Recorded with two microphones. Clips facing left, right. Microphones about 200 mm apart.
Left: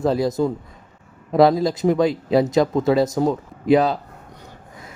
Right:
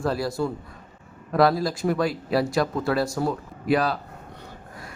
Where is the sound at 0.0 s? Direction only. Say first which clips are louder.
Left 6 dB; 20° left (ahead or behind).